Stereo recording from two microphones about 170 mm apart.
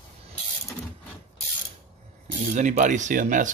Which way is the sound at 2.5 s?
45° right (ahead or behind).